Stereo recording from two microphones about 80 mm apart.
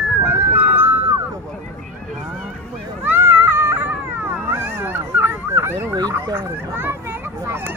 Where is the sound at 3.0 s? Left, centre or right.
Right.